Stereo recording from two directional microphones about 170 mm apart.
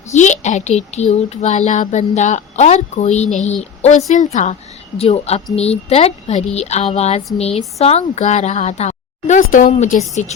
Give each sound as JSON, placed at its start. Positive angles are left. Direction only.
{"t": 0.1, "sound": "a child's voice", "side_deg": 45}